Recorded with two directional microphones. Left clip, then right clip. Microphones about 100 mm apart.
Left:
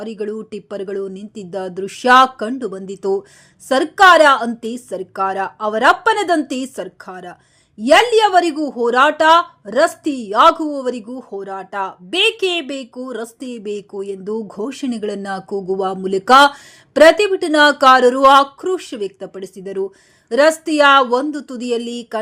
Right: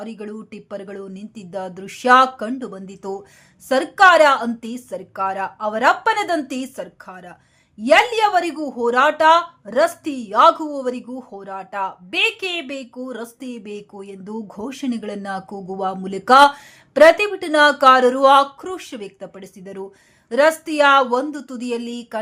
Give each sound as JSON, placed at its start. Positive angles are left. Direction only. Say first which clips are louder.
{"t": 0.0, "sound": "speech", "louder": "left 8 dB", "side_deg": 40}